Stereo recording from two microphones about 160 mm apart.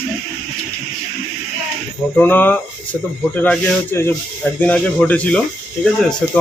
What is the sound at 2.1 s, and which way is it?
Speech, 10° left (ahead or behind).